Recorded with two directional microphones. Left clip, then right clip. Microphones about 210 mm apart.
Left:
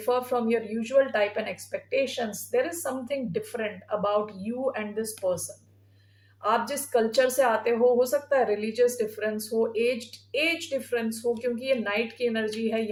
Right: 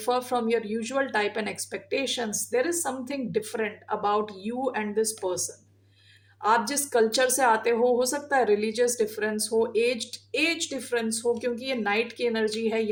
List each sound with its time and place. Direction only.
0.0 s a woman's voice: 45° right (ahead or behind)
6.4 s a woman's voice: 45° right (ahead or behind)